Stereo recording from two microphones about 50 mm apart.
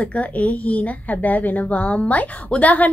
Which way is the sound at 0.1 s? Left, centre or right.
Left.